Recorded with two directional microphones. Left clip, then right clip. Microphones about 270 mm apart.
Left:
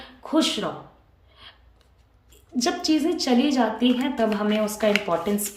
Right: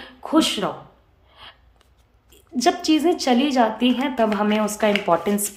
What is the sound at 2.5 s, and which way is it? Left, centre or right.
Speech, centre.